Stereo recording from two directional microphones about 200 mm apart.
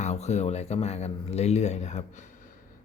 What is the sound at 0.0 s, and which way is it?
Speech, 35° left (ahead or behind).